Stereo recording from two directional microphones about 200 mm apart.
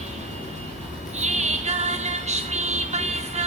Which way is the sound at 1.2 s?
35° right (ahead or behind).